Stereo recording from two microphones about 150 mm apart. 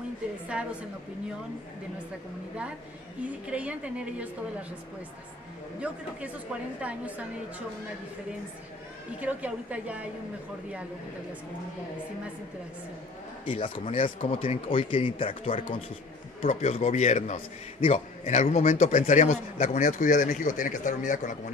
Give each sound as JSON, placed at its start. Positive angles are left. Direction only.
{"t": 0.5, "sound": "a woman's voice", "side_deg": -5}
{"t": 3.4, "sound": "a woman's voice", "side_deg": -10}
{"t": 6.8, "sound": "a woman's voice", "side_deg": -10}
{"t": 9.2, "sound": "a woman's voice", "side_deg": -10}
{"t": 13.5, "sound": "a man's voice", "side_deg": 35}